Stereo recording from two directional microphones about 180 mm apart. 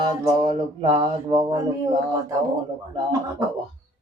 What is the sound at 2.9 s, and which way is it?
Speech, 20° right (ahead or behind).